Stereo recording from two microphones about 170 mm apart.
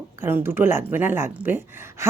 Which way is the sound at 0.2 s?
15° right (ahead or behind).